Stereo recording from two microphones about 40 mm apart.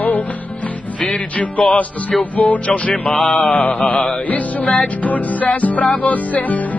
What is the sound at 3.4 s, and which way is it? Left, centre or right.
Music, left.